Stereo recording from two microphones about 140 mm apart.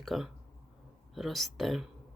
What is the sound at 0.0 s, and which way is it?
Speech, centre (ahead or behind).